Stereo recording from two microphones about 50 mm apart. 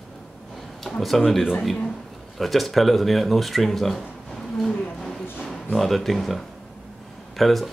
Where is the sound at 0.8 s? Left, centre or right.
Centre.